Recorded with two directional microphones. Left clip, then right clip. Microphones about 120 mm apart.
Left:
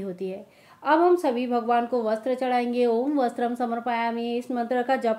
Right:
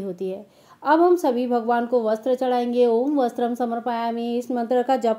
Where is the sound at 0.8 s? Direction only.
40° right (ahead or behind).